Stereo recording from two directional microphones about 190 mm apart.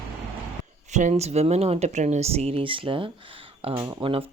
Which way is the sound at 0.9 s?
40° right (ahead or behind).